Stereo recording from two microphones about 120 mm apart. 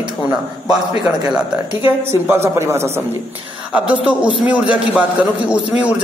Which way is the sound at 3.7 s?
5° right (ahead or behind).